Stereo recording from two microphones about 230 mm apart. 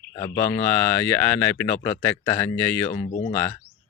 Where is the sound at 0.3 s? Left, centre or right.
Centre.